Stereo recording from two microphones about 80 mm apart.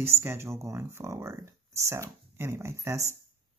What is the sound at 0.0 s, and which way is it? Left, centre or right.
Speech, right.